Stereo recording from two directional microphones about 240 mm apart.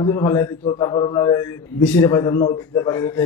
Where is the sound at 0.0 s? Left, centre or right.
Centre.